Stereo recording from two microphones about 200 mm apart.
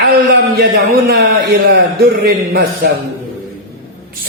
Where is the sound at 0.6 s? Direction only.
50° right (ahead or behind).